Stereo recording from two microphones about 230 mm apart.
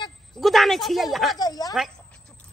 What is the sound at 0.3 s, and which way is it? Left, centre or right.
Speech, centre.